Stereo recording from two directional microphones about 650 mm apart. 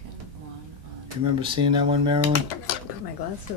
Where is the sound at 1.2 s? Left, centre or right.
Centre.